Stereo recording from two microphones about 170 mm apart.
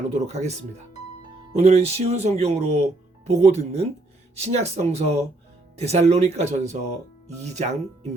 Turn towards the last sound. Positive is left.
turn(degrees=-40)  # may be behind; listen again after turning